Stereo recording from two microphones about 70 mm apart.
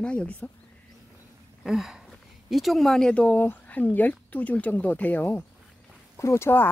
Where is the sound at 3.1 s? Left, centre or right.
Left.